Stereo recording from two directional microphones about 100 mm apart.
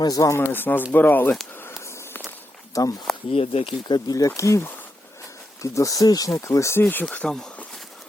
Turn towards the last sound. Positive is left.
turn(degrees=5)  # may be behind; listen again after turning